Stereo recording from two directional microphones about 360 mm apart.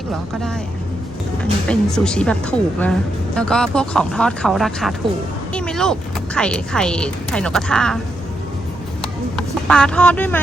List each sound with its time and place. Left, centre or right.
1.4 s speech: centre
9.3 s speech: centre